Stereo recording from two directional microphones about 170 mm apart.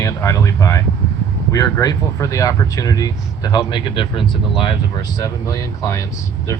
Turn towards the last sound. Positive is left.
turn(degrees=20)  # may be behind; listen again after turning